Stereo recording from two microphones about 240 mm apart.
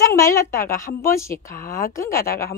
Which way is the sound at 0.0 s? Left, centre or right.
Centre.